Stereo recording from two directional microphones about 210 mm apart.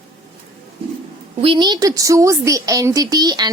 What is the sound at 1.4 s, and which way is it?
A woman's voice, 25° right (ahead or behind).